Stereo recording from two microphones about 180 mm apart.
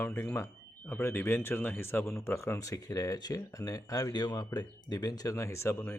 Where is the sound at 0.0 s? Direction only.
10° left (ahead or behind).